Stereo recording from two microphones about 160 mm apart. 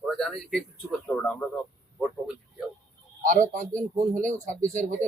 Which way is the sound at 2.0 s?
Centre (ahead or behind).